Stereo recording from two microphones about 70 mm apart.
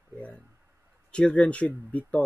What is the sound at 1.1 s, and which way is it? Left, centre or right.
Speech, centre.